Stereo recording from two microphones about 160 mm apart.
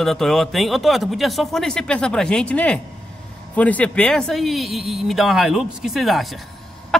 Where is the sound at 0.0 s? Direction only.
Centre (ahead or behind).